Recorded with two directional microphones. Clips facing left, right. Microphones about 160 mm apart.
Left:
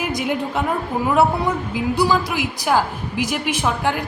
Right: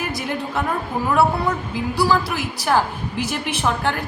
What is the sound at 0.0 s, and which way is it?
Speech, 15° left (ahead or behind).